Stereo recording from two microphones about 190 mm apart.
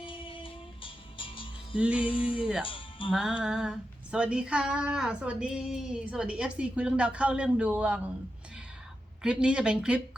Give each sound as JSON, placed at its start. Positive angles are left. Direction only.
{"t": 0.0, "sound": "music", "side_deg": 25}
{"t": 2.0, "sound": "a sound", "side_deg": 25}
{"t": 2.6, "sound": "music", "side_deg": 25}
{"t": 3.1, "sound": "female singing", "side_deg": -5}
{"t": 9.2, "sound": "female singing", "side_deg": -5}